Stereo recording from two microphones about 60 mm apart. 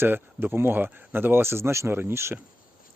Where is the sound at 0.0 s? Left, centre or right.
Right.